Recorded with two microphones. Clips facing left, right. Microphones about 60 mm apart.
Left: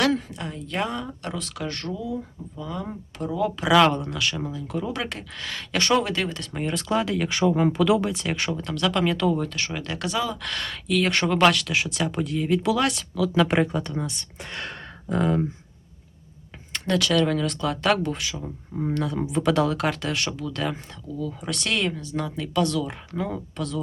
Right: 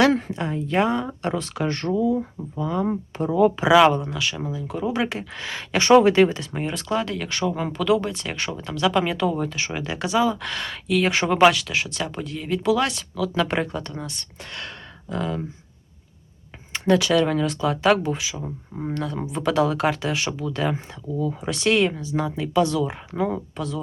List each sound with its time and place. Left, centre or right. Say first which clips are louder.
0.3 s speech: right 7 dB; centre; by 2.2 s right
2.6 s speech: right 9 dB; right
3.9 s speech: right 1 dB; centre
15.1 s speech: left 4 dB; left
16.7 s speech: right 3 dB; centre